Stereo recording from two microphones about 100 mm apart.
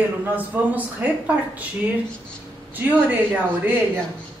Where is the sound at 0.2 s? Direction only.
15° right (ahead or behind).